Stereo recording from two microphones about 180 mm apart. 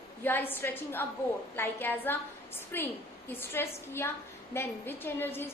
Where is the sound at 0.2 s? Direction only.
10° left (ahead or behind).